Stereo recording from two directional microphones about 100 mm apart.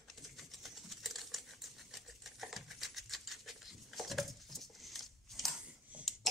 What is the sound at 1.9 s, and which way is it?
Patter, centre (ahead or behind).